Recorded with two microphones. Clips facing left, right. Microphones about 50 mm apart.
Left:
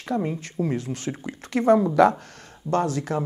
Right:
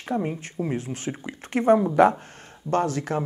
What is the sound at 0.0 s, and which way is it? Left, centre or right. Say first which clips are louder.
Speech: left 1 dB; right.